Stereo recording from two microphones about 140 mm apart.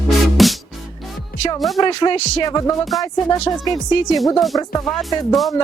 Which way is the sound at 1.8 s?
35° left (ahead or behind).